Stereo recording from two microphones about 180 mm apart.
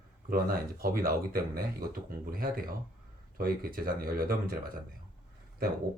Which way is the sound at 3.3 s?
55° right (ahead or behind).